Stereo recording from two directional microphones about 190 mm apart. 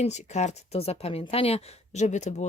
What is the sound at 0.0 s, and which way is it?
Speech, 35° left (ahead or behind).